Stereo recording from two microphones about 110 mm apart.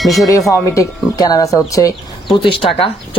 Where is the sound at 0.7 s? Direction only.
30° left (ahead or behind).